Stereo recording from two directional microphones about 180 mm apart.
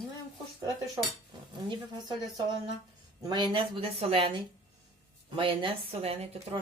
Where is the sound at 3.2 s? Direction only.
25° right (ahead or behind).